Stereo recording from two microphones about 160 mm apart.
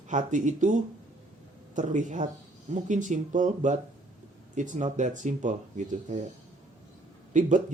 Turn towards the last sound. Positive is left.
turn(degrees=-50)  # may be behind; listen again after turning